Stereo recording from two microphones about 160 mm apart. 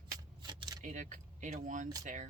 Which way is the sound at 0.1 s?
25° right (ahead or behind).